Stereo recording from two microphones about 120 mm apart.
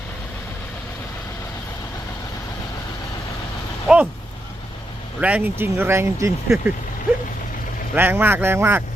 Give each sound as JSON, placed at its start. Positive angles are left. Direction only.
{"t": 3.8, "sound": "vehicle", "side_deg": -10}
{"t": 5.2, "sound": "speech", "side_deg": -15}
{"t": 7.9, "sound": "a man's voice", "side_deg": -15}